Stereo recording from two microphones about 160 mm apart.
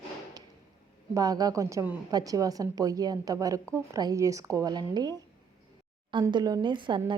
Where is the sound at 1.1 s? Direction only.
25° right (ahead or behind).